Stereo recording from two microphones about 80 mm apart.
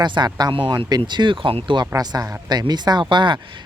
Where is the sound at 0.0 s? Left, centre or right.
Right.